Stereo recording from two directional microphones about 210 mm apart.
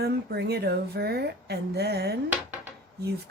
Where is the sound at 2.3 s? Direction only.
10° right (ahead or behind).